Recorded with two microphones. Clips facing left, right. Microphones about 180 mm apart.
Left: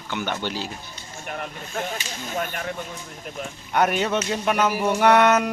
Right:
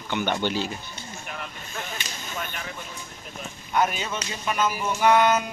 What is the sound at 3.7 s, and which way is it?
Speech, 65° left (ahead or behind).